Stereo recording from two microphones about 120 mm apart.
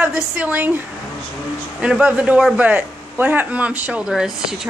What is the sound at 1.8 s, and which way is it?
A man's voice, 10° right (ahead or behind).